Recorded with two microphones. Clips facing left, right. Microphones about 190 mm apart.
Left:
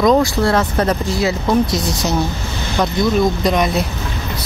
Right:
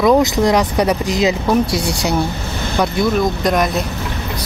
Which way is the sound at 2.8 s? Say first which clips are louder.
Left 1 dB; centre (ahead or behind).